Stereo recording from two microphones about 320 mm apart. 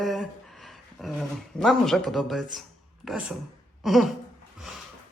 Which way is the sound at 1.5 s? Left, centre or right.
Centre.